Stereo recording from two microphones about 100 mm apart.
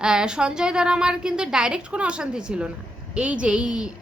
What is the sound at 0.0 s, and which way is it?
A woman's voice, 5° right (ahead or behind).